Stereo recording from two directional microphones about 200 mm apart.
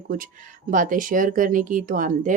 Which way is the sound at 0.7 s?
40° right (ahead or behind).